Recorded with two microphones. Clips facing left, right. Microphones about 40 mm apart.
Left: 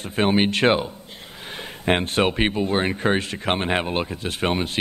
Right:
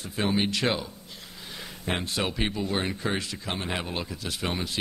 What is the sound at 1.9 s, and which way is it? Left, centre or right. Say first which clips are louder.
Speech: left 9 dB; left.